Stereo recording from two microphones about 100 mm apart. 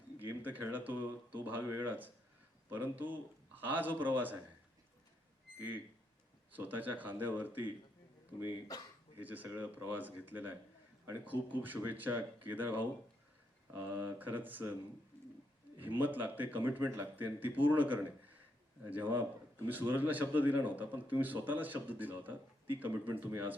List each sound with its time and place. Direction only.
0.2 s a man's voice: 20° right (ahead or behind)
6.6 s a man's voice: 20° right (ahead or behind)
9.1 s a man's voice: 20° right (ahead or behind)
15.8 s a man's voice: 15° right (ahead or behind)